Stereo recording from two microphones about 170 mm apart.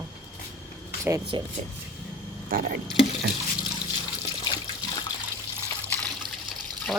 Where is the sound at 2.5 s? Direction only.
60° right (ahead or behind).